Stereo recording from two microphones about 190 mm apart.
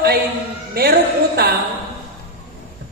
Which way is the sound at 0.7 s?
55° right (ahead or behind).